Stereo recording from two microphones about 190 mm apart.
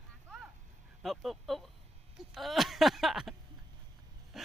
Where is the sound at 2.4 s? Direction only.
Centre (ahead or behind).